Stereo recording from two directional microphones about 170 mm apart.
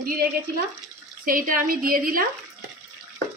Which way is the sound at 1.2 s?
55° right (ahead or behind).